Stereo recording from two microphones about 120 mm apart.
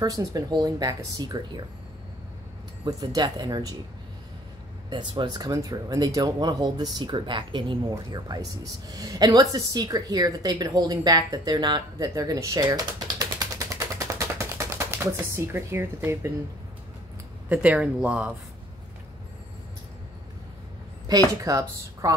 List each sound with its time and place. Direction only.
0.0 s a woman's voice: 30° right (ahead or behind)
2.8 s a woman's voice: 30° right (ahead or behind)
4.8 s a woman's voice: 40° right (ahead or behind)
12.6 s typewriter: 35° right (ahead or behind)
17.5 s speech: 10° right (ahead or behind)
21.4 s a woman's voice: 30° right (ahead or behind)